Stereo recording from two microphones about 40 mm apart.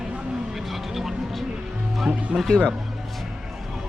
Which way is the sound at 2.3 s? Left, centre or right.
Right.